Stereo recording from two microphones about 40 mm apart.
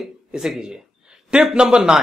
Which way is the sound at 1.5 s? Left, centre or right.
Right.